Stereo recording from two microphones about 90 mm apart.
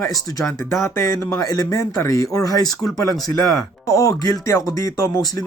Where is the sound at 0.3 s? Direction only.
35° left (ahead or behind).